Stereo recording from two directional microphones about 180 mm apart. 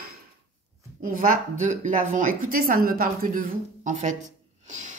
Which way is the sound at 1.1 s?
50° right (ahead or behind).